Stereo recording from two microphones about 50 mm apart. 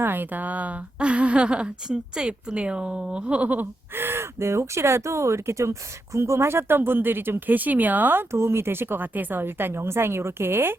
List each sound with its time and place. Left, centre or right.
0.0 s a woman's voice: right
3.9 s a woman's voice: right
8.3 s a woman's voice: right